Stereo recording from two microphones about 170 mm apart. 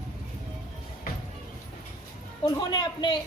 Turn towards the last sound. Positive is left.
turn(degrees=25)  # may be behind; listen again after turning